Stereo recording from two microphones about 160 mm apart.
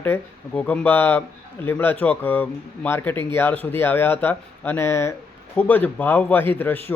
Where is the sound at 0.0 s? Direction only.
10° left (ahead or behind).